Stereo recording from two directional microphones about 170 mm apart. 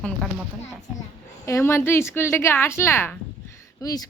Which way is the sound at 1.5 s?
15° left (ahead or behind).